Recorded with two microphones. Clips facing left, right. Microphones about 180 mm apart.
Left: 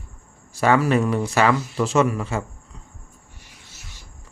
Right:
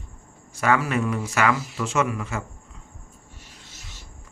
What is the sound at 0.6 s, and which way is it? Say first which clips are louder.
Speech: left 4 dB; 35° left (ahead or behind).